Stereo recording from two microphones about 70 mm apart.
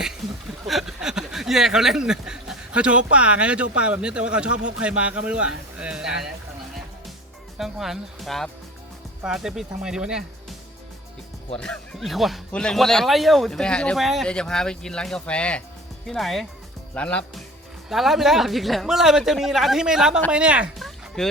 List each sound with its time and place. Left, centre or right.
0.7 s speech: centre
7.6 s a man's voice: centre
9.2 s speech: centre
11.6 s speech: centre
11.9 s a man's voice: centre
12.5 s speech: centre
13.9 s a man's voice: centre
14.3 s speech: centre
16.0 s a man's voice: centre
16.9 s speech: centre
17.8 s a man's voice: centre
20.7 s music: centre